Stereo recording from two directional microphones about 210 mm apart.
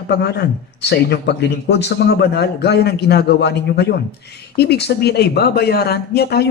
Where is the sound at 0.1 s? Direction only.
50° left (ahead or behind).